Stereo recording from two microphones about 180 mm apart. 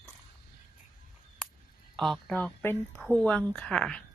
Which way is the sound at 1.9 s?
Centre (ahead or behind).